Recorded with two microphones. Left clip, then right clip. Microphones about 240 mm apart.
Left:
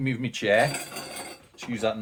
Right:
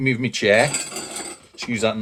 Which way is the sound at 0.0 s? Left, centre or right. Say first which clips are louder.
Right 8 dB; right.